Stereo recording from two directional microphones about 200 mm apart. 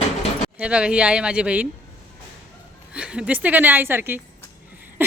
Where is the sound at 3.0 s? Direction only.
5° right (ahead or behind).